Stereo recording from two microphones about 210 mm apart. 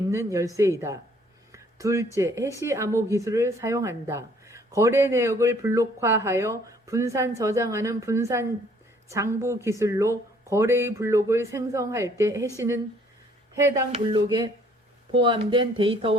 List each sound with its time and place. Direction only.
0.1 s a woman's voice: 15° right (ahead or behind)
1.5 s a sound: 15° right (ahead or behind)
2.1 s a woman's voice: 15° right (ahead or behind)